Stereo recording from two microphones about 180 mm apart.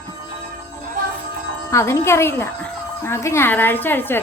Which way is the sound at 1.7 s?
15° left (ahead or behind).